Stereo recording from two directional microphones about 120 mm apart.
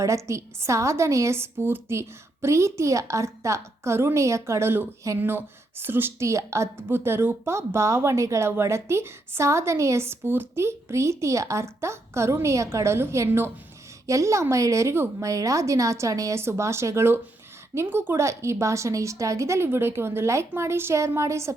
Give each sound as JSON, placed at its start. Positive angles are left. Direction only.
{"t": 0.0, "sound": "speech", "side_deg": -25}